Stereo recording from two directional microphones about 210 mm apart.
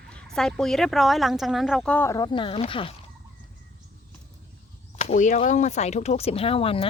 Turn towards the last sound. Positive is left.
turn(degrees=25)  # may be behind; listen again after turning